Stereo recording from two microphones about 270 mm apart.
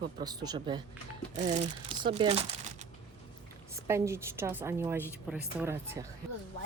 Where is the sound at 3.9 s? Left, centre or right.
Centre.